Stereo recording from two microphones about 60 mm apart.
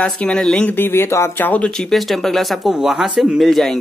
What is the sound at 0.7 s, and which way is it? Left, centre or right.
Speech, left.